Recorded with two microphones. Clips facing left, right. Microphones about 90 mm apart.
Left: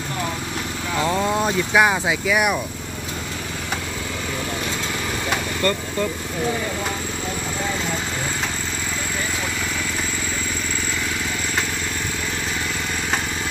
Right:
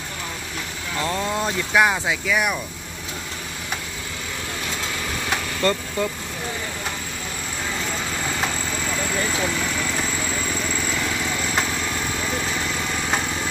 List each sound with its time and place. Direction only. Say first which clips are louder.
0.9 s speech: left 4 dB; 10° left (ahead or behind)
5.6 s vehicle: right 1 dB; 20° right (ahead or behind)